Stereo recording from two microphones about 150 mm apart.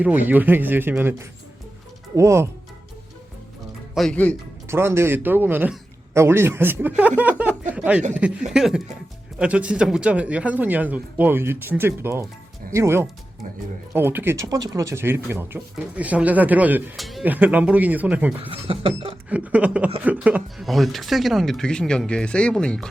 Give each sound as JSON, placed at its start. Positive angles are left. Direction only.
{"t": 0.0, "sound": "speech", "side_deg": -10}
{"t": 3.9, "sound": "speech", "side_deg": 5}
{"t": 4.7, "sound": "speech", "side_deg": -15}
{"t": 17.0, "sound": "speech", "side_deg": 0}
{"t": 17.2, "sound": "speech", "side_deg": -10}
{"t": 18.4, "sound": "speech", "side_deg": -35}
{"t": 19.3, "sound": "speech", "side_deg": -10}